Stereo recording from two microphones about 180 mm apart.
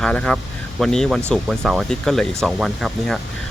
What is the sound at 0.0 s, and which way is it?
Speech, 5° left (ahead or behind).